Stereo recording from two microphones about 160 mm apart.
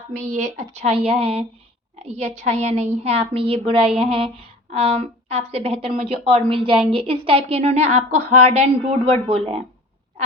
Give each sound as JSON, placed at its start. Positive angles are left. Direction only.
{"t": 0.2, "sound": "speech", "side_deg": -50}